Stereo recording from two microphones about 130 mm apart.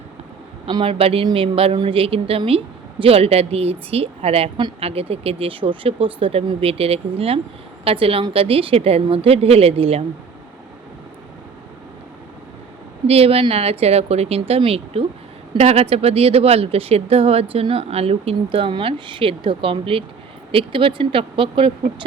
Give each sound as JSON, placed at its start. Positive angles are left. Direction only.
{"t": 0.6, "sound": "speech", "side_deg": -40}
{"t": 13.1, "sound": "speech", "side_deg": -50}